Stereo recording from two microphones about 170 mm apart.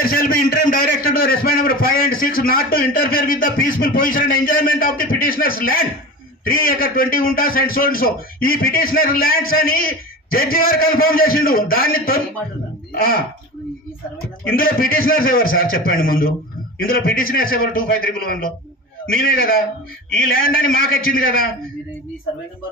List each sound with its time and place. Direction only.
0.0 s a man's voice: 60° left (ahead or behind)
14.6 s a man's voice: 55° left (ahead or behind)